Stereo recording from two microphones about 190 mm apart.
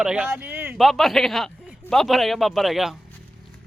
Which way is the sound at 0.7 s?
Centre (ahead or behind).